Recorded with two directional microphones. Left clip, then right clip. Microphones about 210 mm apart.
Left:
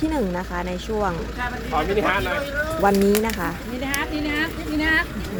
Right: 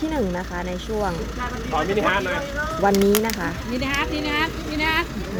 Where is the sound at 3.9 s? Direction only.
40° right (ahead or behind).